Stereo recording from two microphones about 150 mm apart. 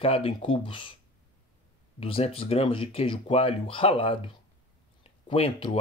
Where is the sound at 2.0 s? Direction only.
40° left (ahead or behind).